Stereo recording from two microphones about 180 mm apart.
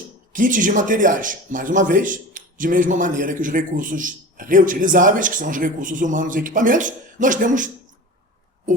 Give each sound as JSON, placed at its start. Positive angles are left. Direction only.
{"t": 0.3, "sound": "a man's voice", "side_deg": -45}